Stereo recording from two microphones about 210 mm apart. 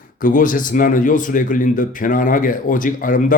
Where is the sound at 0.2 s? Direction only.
40° left (ahead or behind).